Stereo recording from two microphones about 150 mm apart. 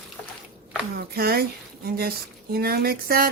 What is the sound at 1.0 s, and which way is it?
Speech, 90° right.